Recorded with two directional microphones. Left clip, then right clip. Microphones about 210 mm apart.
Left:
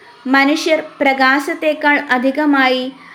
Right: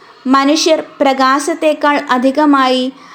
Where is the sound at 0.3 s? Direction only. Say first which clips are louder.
Right 3 dB; 25° right (ahead or behind).